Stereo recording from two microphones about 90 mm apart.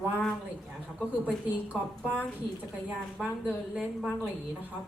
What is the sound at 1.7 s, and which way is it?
Speech, 15° right (ahead or behind).